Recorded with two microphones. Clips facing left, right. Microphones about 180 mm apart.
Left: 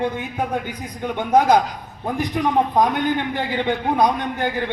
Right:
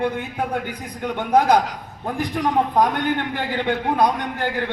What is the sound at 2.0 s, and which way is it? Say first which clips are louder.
A man's voice: left 1 dB; 15° left (ahead or behind).